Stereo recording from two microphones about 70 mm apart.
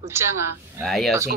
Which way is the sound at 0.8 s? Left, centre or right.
Centre.